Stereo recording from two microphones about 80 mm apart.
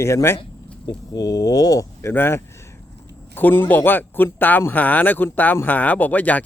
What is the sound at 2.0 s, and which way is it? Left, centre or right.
Speech, left.